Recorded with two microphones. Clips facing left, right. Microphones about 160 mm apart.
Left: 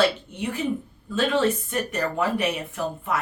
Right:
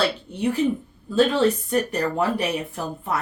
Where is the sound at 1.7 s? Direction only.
35° right (ahead or behind).